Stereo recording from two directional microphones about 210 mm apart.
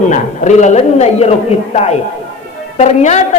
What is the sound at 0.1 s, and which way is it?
Speech, 35° left (ahead or behind).